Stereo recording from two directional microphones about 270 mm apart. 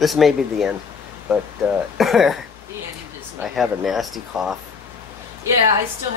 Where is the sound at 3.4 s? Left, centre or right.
Centre.